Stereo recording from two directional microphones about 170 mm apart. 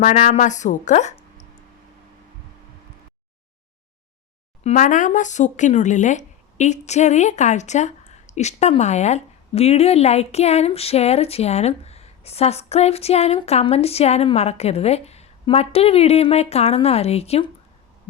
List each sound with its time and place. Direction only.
0.0 s a woman's voice: 40° left (ahead or behind)
4.6 s speech: 45° left (ahead or behind)